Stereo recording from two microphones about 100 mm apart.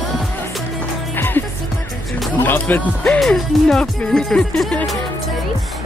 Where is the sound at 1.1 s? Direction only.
20° left (ahead or behind).